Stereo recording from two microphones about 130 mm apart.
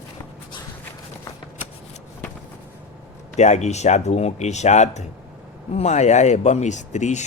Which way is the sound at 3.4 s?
60° left (ahead or behind).